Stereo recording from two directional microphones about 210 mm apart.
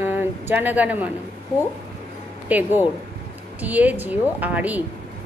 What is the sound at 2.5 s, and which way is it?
A woman's voice, 10° right (ahead or behind).